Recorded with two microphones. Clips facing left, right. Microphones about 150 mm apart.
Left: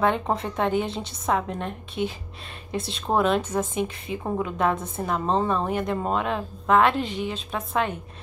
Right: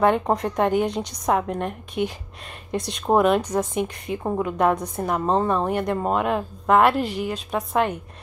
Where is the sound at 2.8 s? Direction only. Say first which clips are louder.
Right 4 dB; 15° right (ahead or behind).